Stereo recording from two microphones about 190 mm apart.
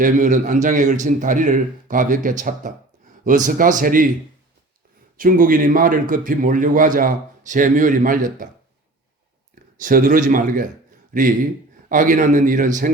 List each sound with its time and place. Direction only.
0.0 s a man's voice: 45° right (ahead or behind)
5.1 s a man's voice: 45° right (ahead or behind)
9.8 s a man's voice: 45° right (ahead or behind)